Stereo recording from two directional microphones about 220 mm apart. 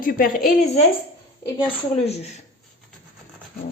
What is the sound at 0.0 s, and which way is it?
Speech, 40° left (ahead or behind).